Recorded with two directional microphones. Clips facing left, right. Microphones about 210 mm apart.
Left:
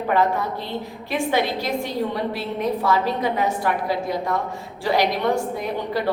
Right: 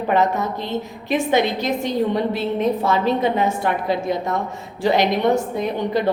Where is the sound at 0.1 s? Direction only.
20° right (ahead or behind).